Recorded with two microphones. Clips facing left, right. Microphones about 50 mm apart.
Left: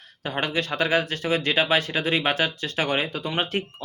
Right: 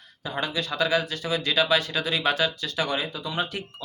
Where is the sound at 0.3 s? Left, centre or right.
Left.